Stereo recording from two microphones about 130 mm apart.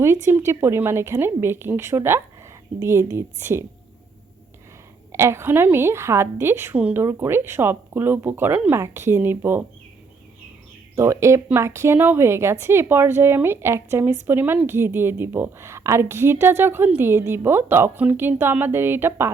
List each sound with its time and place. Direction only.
0.3 s speech: 20° right (ahead or behind)
5.1 s a woman's voice: 20° right (ahead or behind)
10.9 s a woman's voice: 20° right (ahead or behind)